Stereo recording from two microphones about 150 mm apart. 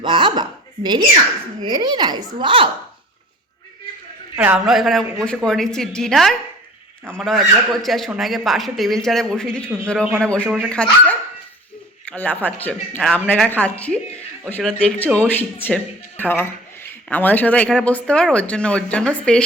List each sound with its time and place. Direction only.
0.0 s speech: 35° right (ahead or behind)
4.4 s a man's voice: 5° right (ahead or behind)
12.0 s speech: 10° left (ahead or behind)